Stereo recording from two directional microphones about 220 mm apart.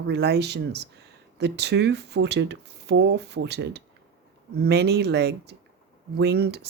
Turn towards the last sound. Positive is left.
turn(degrees=-50)  # may be behind; listen again after turning